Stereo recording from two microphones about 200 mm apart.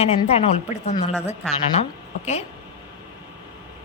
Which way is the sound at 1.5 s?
35° left (ahead or behind).